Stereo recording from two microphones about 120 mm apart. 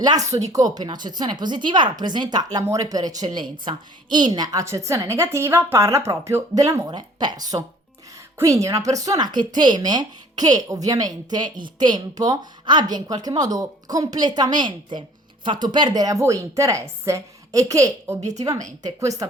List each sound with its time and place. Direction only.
0.0 s a woman's voice: 30° right (ahead or behind)